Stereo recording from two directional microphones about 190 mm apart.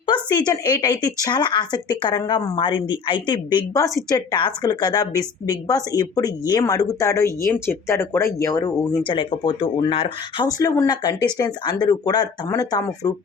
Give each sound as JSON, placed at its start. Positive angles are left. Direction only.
{"t": 0.0, "sound": "a woman's voice", "side_deg": 25}